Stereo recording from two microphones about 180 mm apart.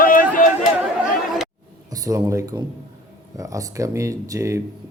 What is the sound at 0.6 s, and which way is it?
Chatter, centre (ahead or behind).